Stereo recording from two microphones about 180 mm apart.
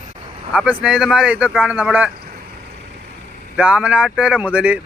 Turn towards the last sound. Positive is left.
turn(degrees=-5)  # may be behind; listen again after turning